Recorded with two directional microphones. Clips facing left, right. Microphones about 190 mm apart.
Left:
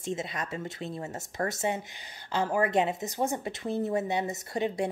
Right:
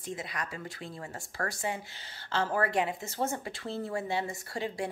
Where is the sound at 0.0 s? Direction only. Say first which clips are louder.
Left 4 dB; 25° left (ahead or behind).